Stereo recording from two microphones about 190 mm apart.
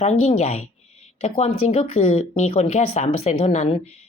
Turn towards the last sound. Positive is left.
turn(degrees=35)  # may be behind; listen again after turning